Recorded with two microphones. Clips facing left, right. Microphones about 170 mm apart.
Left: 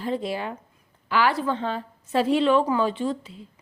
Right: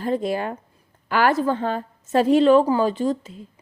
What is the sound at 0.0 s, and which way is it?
A woman's voice, 45° right (ahead or behind).